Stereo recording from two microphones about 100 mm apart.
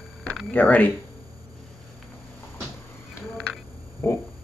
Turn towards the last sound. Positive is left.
turn(degrees=30)  # may be behind; listen again after turning